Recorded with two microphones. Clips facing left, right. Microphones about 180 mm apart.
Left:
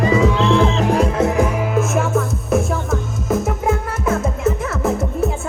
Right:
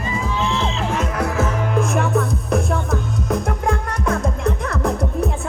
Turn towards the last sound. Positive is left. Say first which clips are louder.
# left 2 dB
turn(degrees=5)  # may be behind; listen again after turning